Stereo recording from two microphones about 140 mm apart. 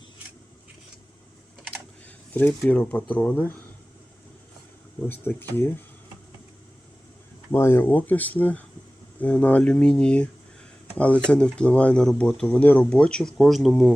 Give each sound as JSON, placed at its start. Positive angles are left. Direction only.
{"t": 2.3, "sound": "speech", "side_deg": 10}
{"t": 4.9, "sound": "speech", "side_deg": 15}
{"t": 7.5, "sound": "speech", "side_deg": 15}